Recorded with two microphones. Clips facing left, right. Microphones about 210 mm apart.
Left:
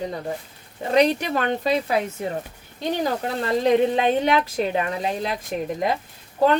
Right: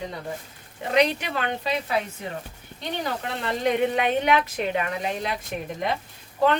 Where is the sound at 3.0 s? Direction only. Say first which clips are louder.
Left 3 dB; 35° left (ahead or behind).